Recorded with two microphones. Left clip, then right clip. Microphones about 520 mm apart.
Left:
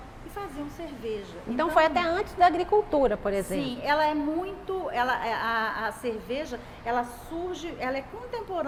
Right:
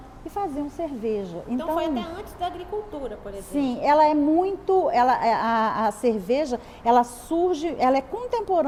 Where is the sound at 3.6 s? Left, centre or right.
Right.